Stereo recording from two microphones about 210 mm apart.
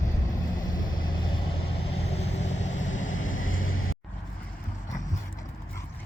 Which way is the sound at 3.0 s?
70° left (ahead or behind).